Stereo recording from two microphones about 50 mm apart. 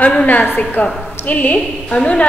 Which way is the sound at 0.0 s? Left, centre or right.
Left.